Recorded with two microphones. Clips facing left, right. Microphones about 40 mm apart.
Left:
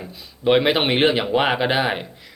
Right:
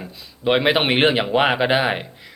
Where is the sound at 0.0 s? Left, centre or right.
Centre.